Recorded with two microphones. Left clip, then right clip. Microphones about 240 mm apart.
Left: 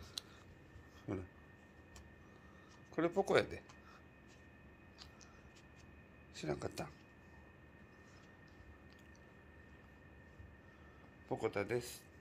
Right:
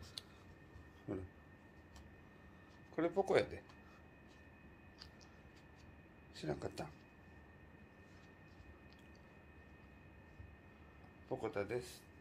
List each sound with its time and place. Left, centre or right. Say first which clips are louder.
1.1 s speech: left 1 dB; left
3.0 s speech: left 1 dB; left
6.3 s speech: left 1 dB; left
11.2 s speech: left 3 dB; left